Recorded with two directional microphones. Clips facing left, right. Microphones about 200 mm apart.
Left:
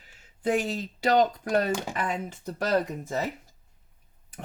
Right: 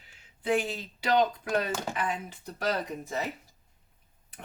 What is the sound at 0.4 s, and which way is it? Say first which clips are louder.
Speech: left 2 dB; 45° left (ahead or behind).